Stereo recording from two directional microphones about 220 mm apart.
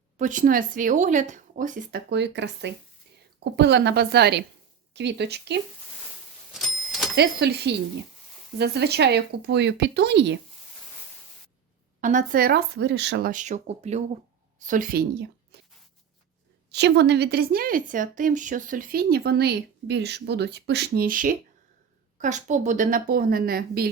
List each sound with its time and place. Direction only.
0.2 s a woman's voice: 35° right (ahead or behind)
6.5 s a sound: centre (ahead or behind)
7.2 s a woman's voice: 50° right (ahead or behind)
11.9 s a woman's voice: 35° right (ahead or behind)
13.3 s speech: 35° right (ahead or behind)
15.5 s a sound: 50° right (ahead or behind)
16.7 s a woman's voice: 50° right (ahead or behind)